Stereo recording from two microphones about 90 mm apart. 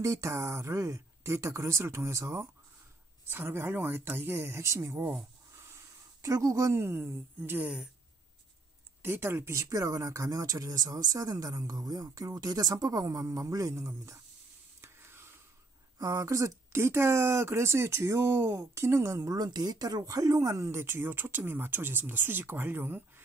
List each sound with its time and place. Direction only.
0.0 s speech: 35° right (ahead or behind)
9.0 s speech: 25° right (ahead or behind)
14.8 s a sound: 25° right (ahead or behind)
16.0 s speech: 40° right (ahead or behind)